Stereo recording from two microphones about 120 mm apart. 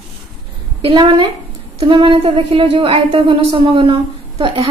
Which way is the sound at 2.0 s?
50° right (ahead or behind).